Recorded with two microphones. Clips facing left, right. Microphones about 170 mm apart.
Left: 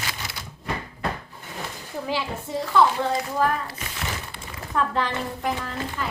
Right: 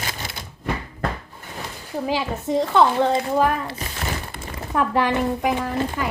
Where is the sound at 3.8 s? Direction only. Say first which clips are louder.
Right 4 dB; 40° right (ahead or behind).